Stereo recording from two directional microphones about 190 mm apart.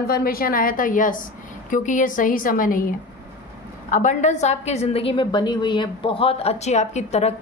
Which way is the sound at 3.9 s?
40° left (ahead or behind).